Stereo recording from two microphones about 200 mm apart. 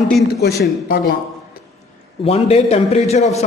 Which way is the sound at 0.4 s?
55° left (ahead or behind).